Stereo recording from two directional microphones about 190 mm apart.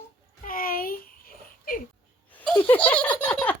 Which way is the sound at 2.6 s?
10° left (ahead or behind).